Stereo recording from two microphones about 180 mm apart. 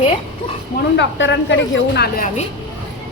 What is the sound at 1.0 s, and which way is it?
Speech, 90° left.